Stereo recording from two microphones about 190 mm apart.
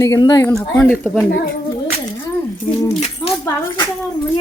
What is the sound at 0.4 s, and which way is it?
Speech, 5° left (ahead or behind).